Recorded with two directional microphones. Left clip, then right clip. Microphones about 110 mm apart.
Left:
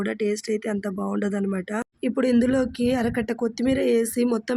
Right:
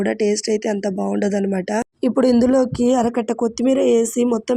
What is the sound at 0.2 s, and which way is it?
Speech, 25° right (ahead or behind).